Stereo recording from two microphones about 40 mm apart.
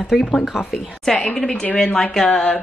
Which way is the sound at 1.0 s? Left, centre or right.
Centre.